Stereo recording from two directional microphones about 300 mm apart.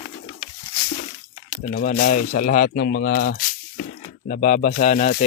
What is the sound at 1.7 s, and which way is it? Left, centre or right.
Speech, left.